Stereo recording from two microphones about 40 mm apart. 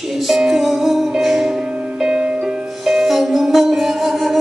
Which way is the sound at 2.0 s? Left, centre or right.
Right.